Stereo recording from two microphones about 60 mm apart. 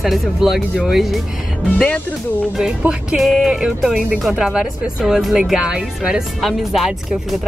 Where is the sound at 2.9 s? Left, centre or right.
Centre.